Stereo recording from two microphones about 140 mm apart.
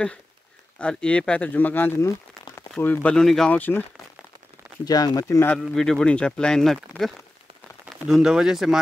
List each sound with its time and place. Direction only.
0.7 s speech: 10° left (ahead or behind)
4.8 s speech: 25° left (ahead or behind)
5.6 s speech: 5° left (ahead or behind)
8.1 s speech: 5° right (ahead or behind)